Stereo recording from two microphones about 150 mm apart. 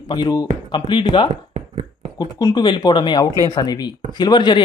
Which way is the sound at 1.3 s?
45° right (ahead or behind).